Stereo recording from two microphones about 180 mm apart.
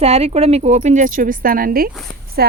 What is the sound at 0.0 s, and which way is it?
Speech, 35° right (ahead or behind).